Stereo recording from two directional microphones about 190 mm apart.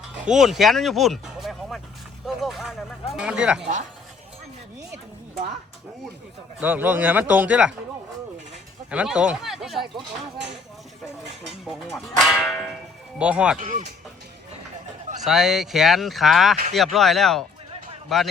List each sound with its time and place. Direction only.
0.3 s speech: centre (ahead or behind)
2.2 s vehicle: centre (ahead or behind)
3.1 s speech: 5° right (ahead or behind)
6.6 s speech: 10° right (ahead or behind)
8.9 s speech: 5° right (ahead or behind)
11.6 s speech: centre (ahead or behind)
13.6 s speech: 40° right (ahead or behind)
15.2 s speech: centre (ahead or behind)